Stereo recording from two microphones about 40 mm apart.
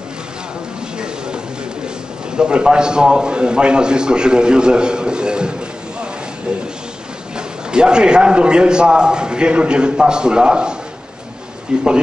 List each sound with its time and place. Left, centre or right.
2.3 s a man's voice: right
7.3 s a man's voice: right